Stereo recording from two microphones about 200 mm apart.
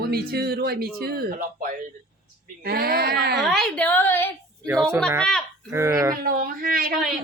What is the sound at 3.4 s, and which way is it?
Speech, centre (ahead or behind).